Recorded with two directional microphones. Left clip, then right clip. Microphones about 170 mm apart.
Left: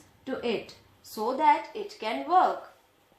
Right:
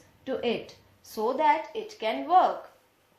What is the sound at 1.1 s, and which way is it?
Speech, 50° right (ahead or behind).